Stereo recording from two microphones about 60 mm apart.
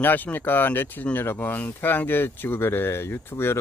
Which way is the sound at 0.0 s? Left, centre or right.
Left.